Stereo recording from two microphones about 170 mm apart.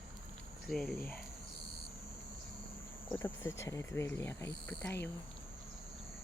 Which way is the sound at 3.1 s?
10° left (ahead or behind).